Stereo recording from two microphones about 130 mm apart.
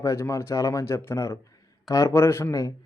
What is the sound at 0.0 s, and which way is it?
A man's voice, 25° left (ahead or behind).